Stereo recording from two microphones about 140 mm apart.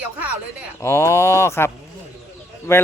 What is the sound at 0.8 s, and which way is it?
Speech, 20° left (ahead or behind).